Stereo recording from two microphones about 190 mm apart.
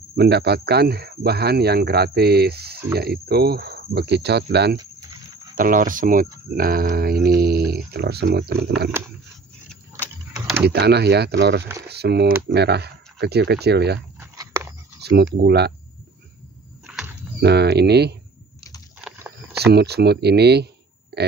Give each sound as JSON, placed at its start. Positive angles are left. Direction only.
{"t": 0.1, "sound": "speech", "side_deg": -60}
{"t": 5.6, "sound": "speech", "side_deg": -45}
{"t": 10.6, "sound": "speech", "side_deg": -60}
{"t": 14.2, "sound": "a sound", "side_deg": -15}
{"t": 15.0, "sound": "a sound", "side_deg": -60}
{"t": 15.3, "sound": "speech", "side_deg": -60}
{"t": 16.8, "sound": "a sound", "side_deg": -5}
{"t": 17.4, "sound": "speech", "side_deg": -60}
{"t": 19.6, "sound": "speech", "side_deg": -60}
{"t": 21.1, "sound": "burping", "side_deg": -60}